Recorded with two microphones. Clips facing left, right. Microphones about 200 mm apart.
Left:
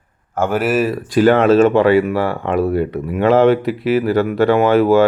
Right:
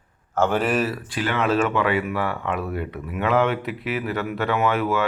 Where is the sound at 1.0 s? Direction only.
40° left (ahead or behind).